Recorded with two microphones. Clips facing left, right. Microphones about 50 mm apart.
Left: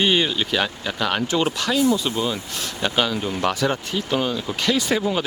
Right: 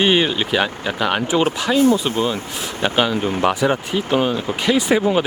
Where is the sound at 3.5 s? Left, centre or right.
Centre.